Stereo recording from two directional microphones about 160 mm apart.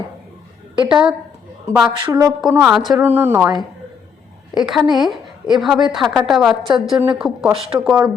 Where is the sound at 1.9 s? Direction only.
30° right (ahead or behind).